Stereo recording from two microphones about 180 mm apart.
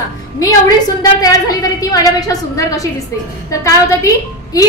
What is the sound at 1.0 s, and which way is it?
A woman's voice, 20° left (ahead or behind).